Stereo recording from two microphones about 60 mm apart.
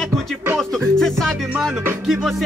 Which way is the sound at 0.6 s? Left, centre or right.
Centre.